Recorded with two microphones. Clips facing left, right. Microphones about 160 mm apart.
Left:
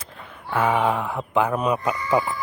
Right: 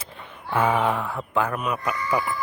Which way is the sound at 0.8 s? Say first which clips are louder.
Left 2 dB; 10° left (ahead or behind).